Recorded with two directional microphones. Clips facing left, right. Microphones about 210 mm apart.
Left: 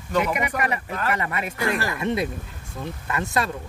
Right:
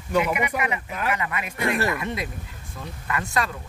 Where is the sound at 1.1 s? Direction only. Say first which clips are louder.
Left 2 dB; 35° left (ahead or behind).